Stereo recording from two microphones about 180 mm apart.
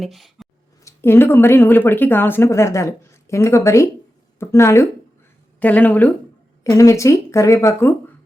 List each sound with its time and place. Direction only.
0.0 s speech: centre (ahead or behind)
0.9 s speech: 15° left (ahead or behind)